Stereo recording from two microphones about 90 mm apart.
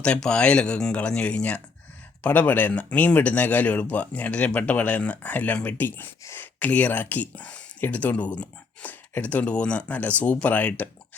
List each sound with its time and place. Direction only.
0.0 s speech: 10° left (ahead or behind)